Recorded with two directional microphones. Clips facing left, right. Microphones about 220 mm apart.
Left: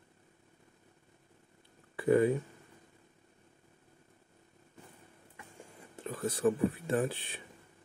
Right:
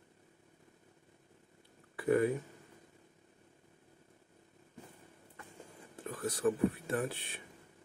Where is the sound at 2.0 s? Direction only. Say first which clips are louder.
Left 3 dB; 25° left (ahead or behind).